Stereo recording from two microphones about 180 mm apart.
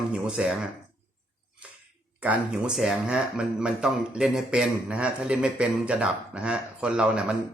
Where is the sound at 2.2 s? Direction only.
5° right (ahead or behind).